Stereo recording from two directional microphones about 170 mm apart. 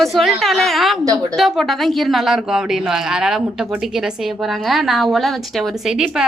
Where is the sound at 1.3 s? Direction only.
Centre (ahead or behind).